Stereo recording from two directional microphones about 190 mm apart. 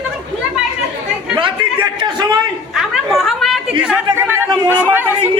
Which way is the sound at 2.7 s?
Centre (ahead or behind).